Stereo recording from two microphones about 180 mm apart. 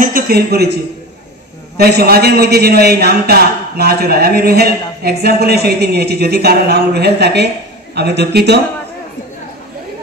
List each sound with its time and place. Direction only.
0.0 s a man's voice: 55° right (ahead or behind)
1.8 s a man's voice: 60° right (ahead or behind)